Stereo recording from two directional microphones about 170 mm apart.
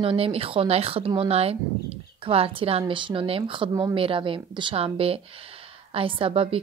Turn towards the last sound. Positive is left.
turn(degrees=-35)  # may be behind; listen again after turning